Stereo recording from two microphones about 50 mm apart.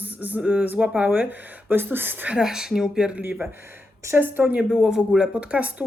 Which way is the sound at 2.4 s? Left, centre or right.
Centre.